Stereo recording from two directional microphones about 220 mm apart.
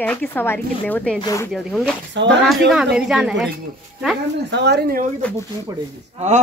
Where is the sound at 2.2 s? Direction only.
55° right (ahead or behind).